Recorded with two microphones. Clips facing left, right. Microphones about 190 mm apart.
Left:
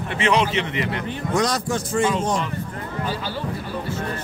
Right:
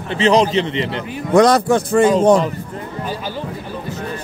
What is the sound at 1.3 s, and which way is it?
Speech, 60° right (ahead or behind).